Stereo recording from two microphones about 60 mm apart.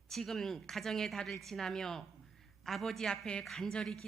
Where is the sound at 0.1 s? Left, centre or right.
Centre.